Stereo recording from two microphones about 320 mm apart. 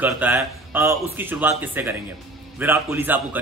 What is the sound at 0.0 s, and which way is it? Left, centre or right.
Speech, centre.